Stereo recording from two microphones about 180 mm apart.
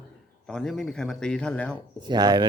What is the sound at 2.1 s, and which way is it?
Speech, 25° right (ahead or behind).